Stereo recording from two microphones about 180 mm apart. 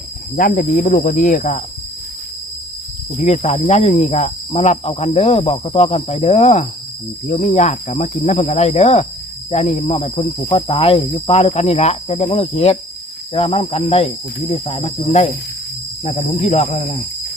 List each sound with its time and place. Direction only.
0.3 s cricket: 50° left (ahead or behind)
3.2 s speech: 40° left (ahead or behind)